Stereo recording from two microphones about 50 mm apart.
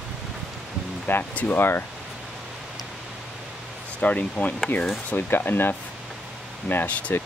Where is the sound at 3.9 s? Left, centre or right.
Left.